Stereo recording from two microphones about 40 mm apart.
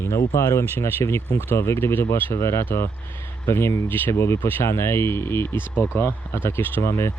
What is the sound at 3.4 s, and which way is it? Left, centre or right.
Speech, left.